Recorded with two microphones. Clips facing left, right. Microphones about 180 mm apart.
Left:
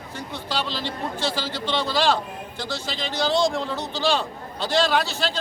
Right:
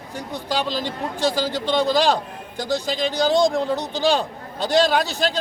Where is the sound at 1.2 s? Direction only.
15° right (ahead or behind).